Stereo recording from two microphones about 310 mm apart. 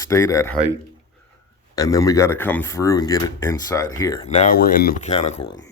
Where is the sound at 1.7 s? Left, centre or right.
Centre.